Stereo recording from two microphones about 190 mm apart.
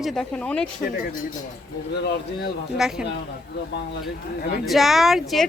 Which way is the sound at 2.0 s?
60° left (ahead or behind).